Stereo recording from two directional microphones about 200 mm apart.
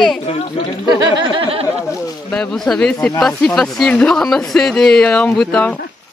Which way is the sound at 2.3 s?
5° left (ahead or behind).